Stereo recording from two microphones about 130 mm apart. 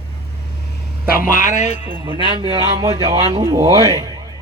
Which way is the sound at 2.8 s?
30° right (ahead or behind).